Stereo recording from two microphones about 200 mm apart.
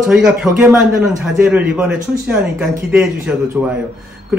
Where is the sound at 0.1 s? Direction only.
5° right (ahead or behind).